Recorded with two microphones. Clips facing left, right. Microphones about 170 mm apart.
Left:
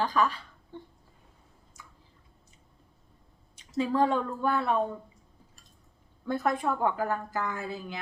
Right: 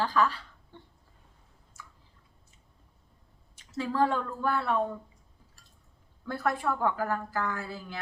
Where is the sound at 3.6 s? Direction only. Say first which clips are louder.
Left 2 dB; 20° left (ahead or behind).